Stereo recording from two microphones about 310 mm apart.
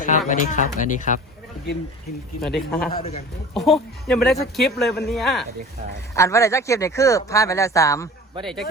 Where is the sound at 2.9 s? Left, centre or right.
Centre.